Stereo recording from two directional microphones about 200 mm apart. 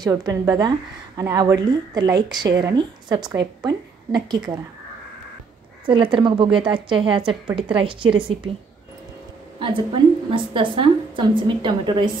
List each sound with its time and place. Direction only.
0.0 s a woman's voice: 15° right (ahead or behind)
5.9 s a woman's voice: 25° right (ahead or behind)
9.6 s a woman's voice: 25° right (ahead or behind)